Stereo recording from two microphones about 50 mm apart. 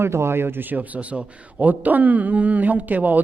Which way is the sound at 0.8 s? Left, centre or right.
Right.